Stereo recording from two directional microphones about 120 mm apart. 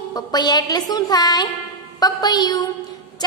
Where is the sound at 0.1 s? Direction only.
35° left (ahead or behind).